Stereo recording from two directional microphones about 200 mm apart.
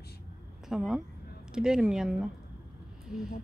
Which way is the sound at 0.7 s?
Centre (ahead or behind).